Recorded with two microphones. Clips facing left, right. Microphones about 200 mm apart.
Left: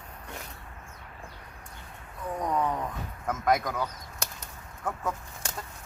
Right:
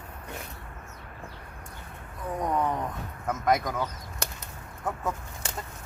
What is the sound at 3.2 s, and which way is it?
Speech, centre (ahead or behind).